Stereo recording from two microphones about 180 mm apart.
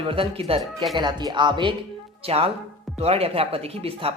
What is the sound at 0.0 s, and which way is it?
Speech, 30° right (ahead or behind).